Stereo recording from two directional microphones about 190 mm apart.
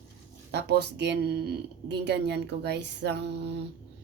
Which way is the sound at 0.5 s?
60° right (ahead or behind).